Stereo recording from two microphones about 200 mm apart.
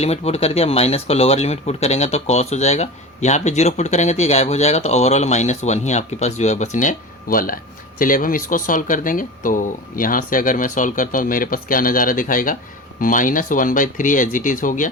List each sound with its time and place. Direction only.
0.0 s speech: 30° left (ahead or behind)